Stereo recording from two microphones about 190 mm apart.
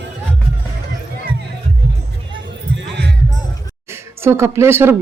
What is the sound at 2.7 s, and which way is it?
Music, 65° right (ahead or behind).